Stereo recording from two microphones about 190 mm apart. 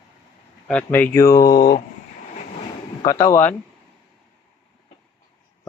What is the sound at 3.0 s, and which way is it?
Speech, 20° left (ahead or behind).